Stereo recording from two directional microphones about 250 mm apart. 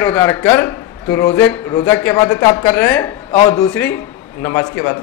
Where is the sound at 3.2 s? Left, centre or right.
Centre.